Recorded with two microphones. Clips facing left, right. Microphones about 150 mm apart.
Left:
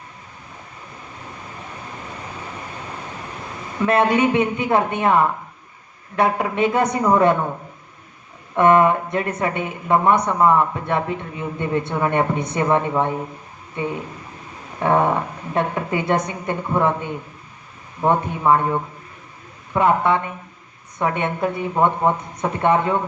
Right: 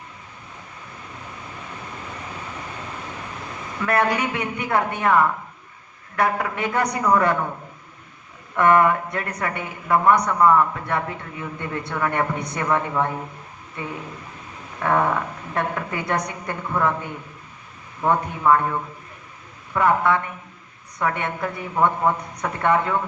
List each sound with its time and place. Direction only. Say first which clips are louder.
3.8 s a woman's voice: left 5 dB; 25° left (ahead or behind)
8.5 s a woman's voice: left 2 dB; 25° left (ahead or behind)
14.8 s a woman's voice: left 3 dB; 25° left (ahead or behind)